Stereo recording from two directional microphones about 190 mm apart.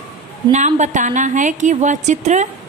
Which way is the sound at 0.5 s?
40° right (ahead or behind).